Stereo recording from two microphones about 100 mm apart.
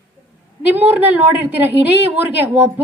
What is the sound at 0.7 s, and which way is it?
A woman's voice, 20° right (ahead or behind).